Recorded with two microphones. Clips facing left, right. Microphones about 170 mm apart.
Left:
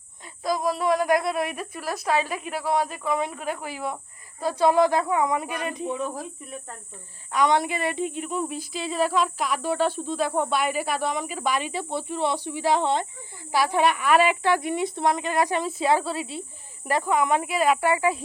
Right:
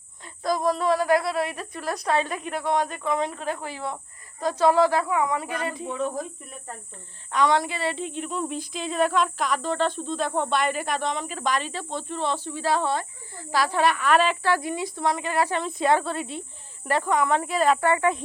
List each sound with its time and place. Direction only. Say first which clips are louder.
0.4 s speech: right 1 dB; 5° left (ahead or behind)
7.3 s speech: even; 20° left (ahead or behind)